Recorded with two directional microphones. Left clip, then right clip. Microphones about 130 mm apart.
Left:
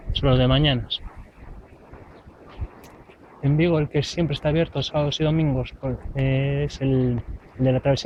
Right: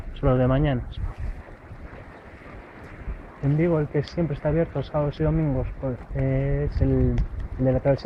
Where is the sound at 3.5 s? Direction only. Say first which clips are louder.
Left 2 dB; 15° left (ahead or behind).